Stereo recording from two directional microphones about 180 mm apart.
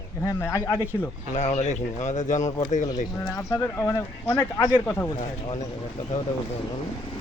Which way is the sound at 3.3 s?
15° left (ahead or behind).